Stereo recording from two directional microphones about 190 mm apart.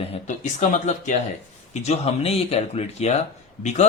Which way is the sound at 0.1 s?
40° left (ahead or behind).